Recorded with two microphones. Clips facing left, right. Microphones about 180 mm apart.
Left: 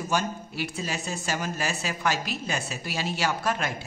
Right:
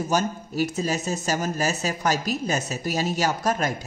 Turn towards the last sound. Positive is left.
turn(degrees=-40)  # may be behind; listen again after turning